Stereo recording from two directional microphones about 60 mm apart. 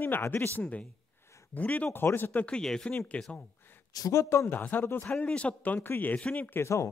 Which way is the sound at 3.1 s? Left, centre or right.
Left.